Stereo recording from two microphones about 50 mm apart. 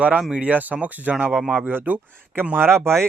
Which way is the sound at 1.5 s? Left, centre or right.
Right.